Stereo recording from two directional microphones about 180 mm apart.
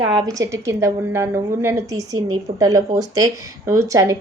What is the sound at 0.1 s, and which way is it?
A woman's voice, 20° right (ahead or behind).